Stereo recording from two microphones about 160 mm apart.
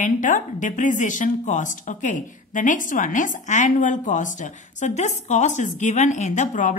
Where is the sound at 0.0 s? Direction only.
50° left (ahead or behind).